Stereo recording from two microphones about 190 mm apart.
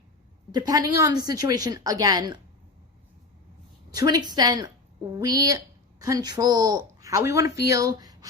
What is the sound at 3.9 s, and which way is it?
A woman's voice, 20° right (ahead or behind).